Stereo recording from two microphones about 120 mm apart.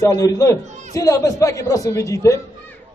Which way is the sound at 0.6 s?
75° right (ahead or behind).